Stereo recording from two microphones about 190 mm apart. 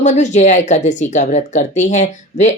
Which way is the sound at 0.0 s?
40° left (ahead or behind).